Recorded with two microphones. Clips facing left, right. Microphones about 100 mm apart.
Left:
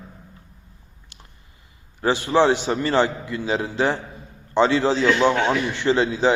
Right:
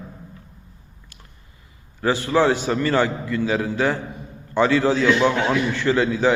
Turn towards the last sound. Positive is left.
turn(degrees=25)  # may be behind; listen again after turning